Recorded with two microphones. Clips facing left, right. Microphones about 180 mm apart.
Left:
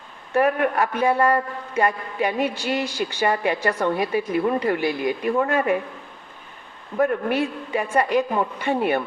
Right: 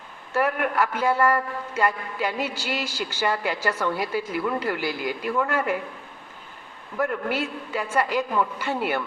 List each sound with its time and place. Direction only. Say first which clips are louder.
0.3 s a woman's voice: left 4 dB; 25° left (ahead or behind)
6.9 s a woman's voice: left 5 dB; 25° left (ahead or behind)